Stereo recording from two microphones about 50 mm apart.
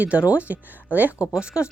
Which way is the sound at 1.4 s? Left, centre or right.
Right.